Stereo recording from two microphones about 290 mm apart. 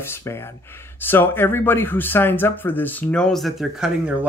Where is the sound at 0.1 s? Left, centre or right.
Centre.